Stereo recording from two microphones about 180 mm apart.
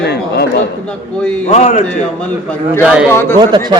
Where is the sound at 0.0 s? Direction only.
70° left (ahead or behind).